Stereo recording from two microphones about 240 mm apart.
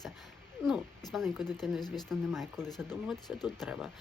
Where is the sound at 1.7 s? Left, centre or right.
Centre.